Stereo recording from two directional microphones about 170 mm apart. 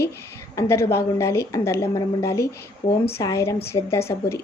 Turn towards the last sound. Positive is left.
turn(degrees=15)  # may be behind; listen again after turning